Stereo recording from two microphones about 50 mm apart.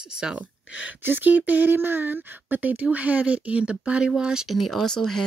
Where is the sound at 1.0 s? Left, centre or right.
Right.